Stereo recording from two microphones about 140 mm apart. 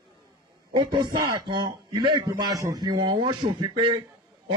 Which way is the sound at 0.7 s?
30° right (ahead or behind).